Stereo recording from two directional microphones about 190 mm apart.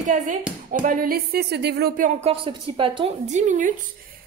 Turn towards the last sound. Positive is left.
turn(degrees=-40)  # may be behind; listen again after turning